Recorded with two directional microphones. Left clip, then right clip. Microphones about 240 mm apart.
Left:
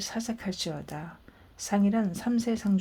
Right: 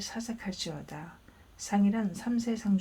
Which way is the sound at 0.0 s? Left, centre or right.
Left.